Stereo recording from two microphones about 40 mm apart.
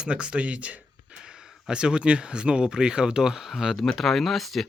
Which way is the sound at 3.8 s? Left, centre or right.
Centre.